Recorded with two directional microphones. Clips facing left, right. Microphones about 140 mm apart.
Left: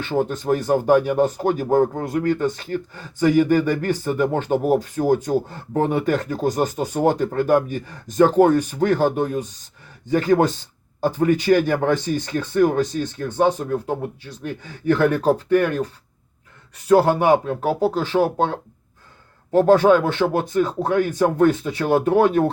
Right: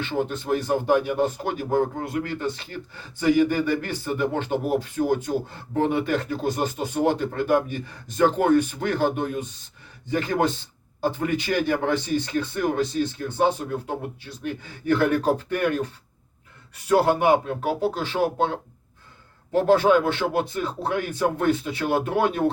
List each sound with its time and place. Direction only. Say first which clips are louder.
0.0 s speech: left 4 dB; 40° left (ahead or behind)
19.5 s speech: left 4 dB; 40° left (ahead or behind)